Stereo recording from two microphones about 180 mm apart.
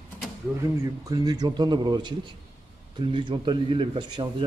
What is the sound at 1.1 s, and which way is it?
A man's voice, 20° right (ahead or behind).